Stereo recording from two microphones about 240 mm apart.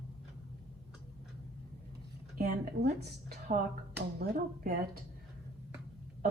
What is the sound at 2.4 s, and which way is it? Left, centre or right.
Speech, right.